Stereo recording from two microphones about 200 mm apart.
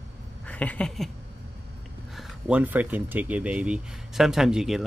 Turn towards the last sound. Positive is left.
turn(degrees=0)  # may be behind; listen again after turning